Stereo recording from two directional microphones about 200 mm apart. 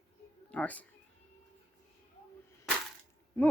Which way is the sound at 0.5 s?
10° left (ahead or behind).